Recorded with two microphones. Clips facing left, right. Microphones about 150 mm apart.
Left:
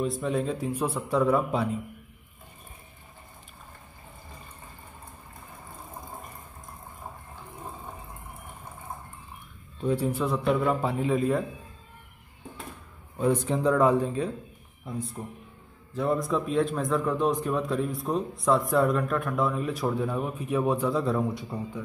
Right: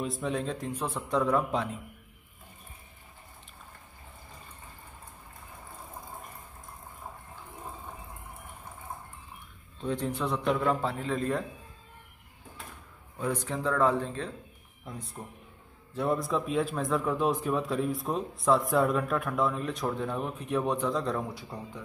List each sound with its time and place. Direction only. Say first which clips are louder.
0.0 s a man's voice: left 4 dB; centre (ahead or behind)
9.8 s a man's voice: left 5 dB; 10° left (ahead or behind)
13.2 s a man's voice: left 7 dB; 20° left (ahead or behind)
14.9 s a man's voice: left 7 dB; centre (ahead or behind)